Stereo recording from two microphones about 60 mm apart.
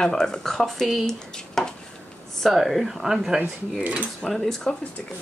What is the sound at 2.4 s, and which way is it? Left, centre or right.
Speech, centre.